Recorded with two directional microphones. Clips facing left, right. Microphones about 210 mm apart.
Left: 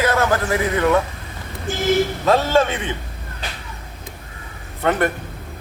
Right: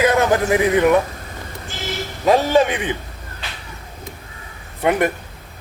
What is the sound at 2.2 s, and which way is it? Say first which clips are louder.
Speech: right 5 dB; 15° right (ahead or behind).